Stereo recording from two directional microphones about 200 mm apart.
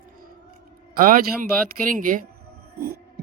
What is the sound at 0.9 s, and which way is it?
A man's voice, 45° right (ahead or behind).